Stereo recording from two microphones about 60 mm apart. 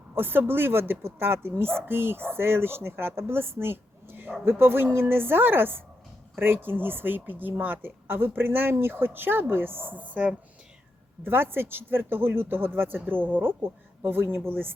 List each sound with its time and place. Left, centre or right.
0.1 s speech: right
11.2 s speech: right